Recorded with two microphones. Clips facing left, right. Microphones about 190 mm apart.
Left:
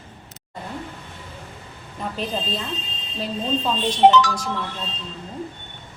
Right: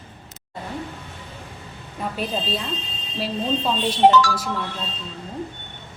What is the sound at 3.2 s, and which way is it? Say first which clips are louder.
Speech: right 1 dB; 5° right (ahead or behind).